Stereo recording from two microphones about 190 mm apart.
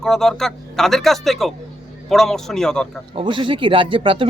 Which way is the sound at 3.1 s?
25° right (ahead or behind).